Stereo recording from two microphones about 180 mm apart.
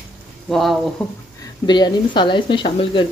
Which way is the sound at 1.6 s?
25° left (ahead or behind).